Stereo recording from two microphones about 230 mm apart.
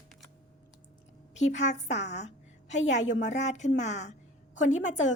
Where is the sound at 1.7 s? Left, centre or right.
Left.